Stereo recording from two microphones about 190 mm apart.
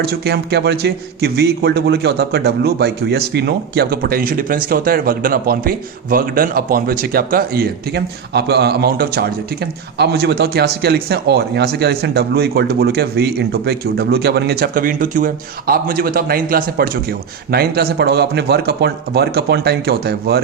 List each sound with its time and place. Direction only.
0.0 s a man's voice: 55° right (ahead or behind)